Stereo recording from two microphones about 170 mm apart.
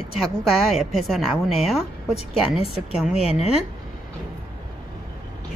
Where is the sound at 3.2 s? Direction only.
35° left (ahead or behind).